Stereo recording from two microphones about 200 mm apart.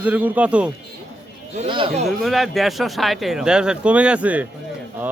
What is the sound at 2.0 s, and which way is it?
Speech, centre (ahead or behind).